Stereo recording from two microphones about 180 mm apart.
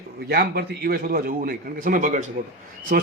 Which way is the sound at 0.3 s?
60° right (ahead or behind).